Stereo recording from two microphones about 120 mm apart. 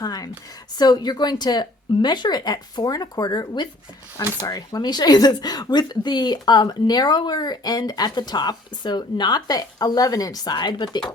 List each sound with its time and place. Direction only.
0.0 s speech: 30° left (ahead or behind)